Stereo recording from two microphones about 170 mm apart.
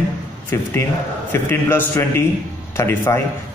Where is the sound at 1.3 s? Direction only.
10° left (ahead or behind).